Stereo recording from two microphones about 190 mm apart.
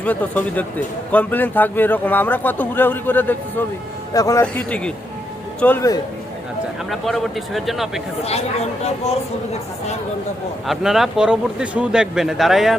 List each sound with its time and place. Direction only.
0.0 s a man's voice: 5° left (ahead or behind)
6.9 s speech: centre (ahead or behind)
8.2 s speech: 35° left (ahead or behind)
10.7 s speech: centre (ahead or behind)